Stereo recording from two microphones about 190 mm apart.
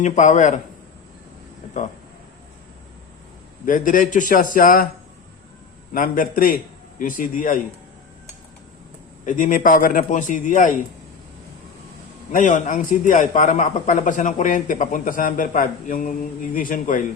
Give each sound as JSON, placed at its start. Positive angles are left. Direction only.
{"t": 0.0, "sound": "a man's voice", "side_deg": 40}
{"t": 3.7, "sound": "a man's voice", "side_deg": 45}
{"t": 5.9, "sound": "a man's voice", "side_deg": 45}
{"t": 9.2, "sound": "a man's voice", "side_deg": 45}
{"t": 12.3, "sound": "a man's voice", "side_deg": 40}